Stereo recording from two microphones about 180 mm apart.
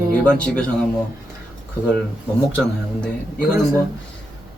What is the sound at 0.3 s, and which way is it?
Speech, 5° left (ahead or behind).